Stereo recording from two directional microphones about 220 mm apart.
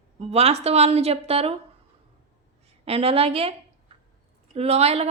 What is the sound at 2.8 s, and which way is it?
A woman's voice, 25° right (ahead or behind).